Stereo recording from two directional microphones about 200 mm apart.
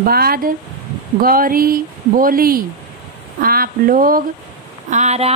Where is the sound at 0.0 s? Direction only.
50° right (ahead or behind).